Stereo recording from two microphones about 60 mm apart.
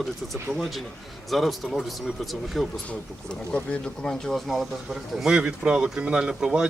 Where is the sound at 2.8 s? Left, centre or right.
Centre.